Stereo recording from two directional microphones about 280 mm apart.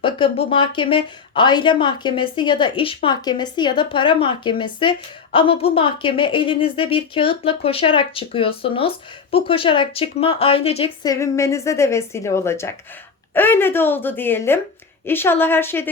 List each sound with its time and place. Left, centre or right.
0.0 s a woman's voice: centre